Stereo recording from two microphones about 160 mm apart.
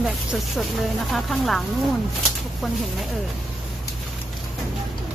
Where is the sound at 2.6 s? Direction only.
Centre (ahead or behind).